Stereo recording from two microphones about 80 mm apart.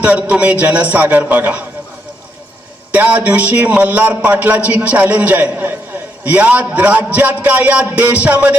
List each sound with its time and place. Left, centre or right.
0.0 s a man's voice: centre
2.9 s a man's voice: centre